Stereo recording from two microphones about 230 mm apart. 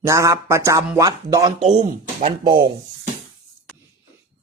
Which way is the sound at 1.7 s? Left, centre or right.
Right.